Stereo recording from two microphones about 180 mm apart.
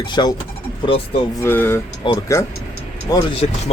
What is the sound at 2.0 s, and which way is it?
A man's voice, 25° left (ahead or behind).